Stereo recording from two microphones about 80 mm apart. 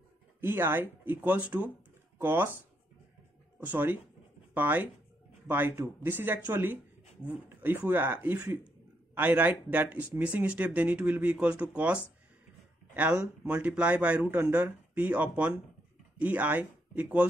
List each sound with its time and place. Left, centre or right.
0.4 s speech: right
3.6 s speech: right